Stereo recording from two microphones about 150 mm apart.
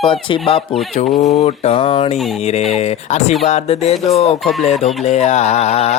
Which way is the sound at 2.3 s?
50° left (ahead or behind).